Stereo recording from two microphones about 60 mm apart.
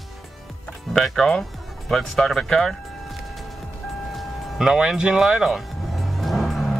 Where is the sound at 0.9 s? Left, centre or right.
Centre.